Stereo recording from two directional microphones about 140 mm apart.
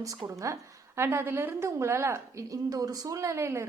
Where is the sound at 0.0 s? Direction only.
25° right (ahead or behind).